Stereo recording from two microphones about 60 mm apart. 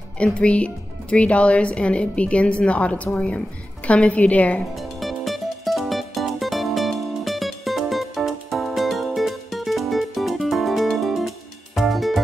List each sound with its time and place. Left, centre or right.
0.2 s speech: centre
4.7 s music: centre